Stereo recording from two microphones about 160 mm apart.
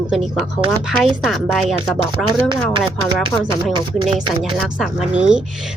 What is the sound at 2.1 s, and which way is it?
Speech, 30° right (ahead or behind).